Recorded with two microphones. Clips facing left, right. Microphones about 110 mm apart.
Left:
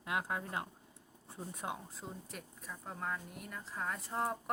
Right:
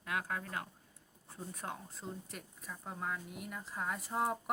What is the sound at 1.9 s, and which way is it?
Speech, 5° left (ahead or behind).